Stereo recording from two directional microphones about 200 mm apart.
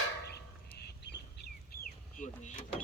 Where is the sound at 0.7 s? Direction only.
55° left (ahead or behind).